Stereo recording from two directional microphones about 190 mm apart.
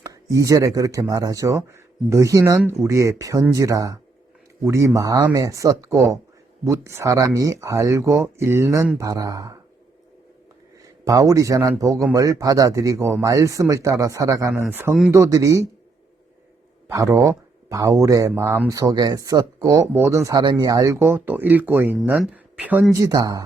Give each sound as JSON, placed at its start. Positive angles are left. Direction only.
{"t": 0.1, "sound": "speech", "side_deg": -15}
{"t": 11.0, "sound": "speech", "side_deg": -20}
{"t": 16.9, "sound": "speech", "side_deg": -15}
{"t": 23.0, "sound": "speech", "side_deg": -20}